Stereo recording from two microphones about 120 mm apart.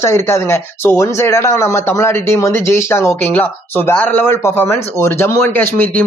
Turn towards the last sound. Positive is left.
turn(degrees=15)  # may be behind; listen again after turning